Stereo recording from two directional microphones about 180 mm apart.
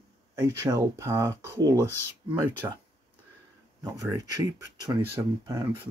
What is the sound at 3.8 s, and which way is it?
Speech, 20° right (ahead or behind).